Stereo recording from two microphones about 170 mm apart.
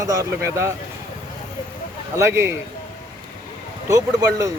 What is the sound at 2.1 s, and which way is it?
Speech, 15° right (ahead or behind).